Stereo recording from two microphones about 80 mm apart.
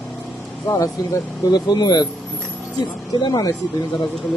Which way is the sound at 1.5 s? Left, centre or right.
Left.